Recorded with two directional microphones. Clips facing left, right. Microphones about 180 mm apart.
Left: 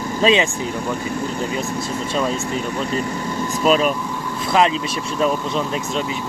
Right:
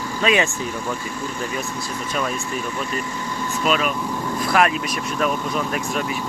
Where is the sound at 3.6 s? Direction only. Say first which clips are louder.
Left 5 dB; 35° left (ahead or behind).